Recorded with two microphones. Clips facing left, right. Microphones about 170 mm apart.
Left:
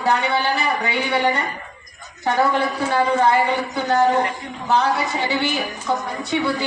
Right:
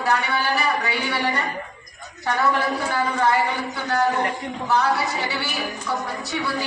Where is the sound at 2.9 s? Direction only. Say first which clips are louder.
Left 5 dB; 25° left (ahead or behind).